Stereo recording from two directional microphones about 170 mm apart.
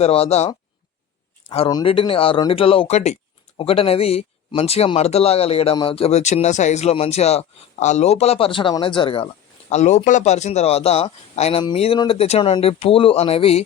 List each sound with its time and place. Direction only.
0.0 s speech: 35° left (ahead or behind)